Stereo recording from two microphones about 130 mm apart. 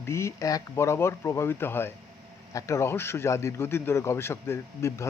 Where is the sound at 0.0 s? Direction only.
20° left (ahead or behind).